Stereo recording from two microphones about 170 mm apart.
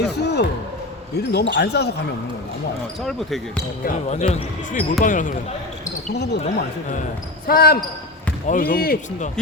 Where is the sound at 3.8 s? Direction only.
45° left (ahead or behind).